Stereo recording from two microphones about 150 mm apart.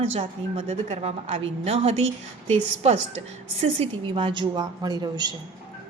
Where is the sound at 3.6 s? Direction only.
40° right (ahead or behind).